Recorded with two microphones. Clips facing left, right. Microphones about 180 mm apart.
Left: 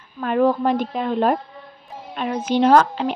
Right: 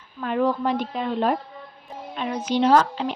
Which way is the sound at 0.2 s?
50° left (ahead or behind).